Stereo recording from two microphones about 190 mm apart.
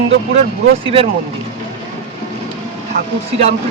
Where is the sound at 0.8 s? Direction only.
30° right (ahead or behind).